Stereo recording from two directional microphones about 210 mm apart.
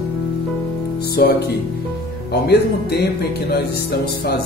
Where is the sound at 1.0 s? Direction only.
50° left (ahead or behind).